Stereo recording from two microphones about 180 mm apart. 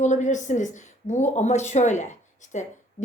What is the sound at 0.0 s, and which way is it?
A woman's voice, 40° left (ahead or behind).